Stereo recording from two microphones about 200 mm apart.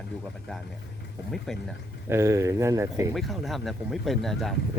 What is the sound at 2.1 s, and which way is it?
Speech, 15° right (ahead or behind).